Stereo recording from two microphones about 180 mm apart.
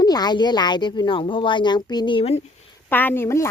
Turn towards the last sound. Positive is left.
turn(degrees=15)  # may be behind; listen again after turning